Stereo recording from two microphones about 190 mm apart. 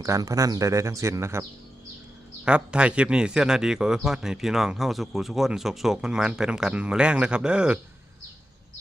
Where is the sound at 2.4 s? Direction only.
5° right (ahead or behind).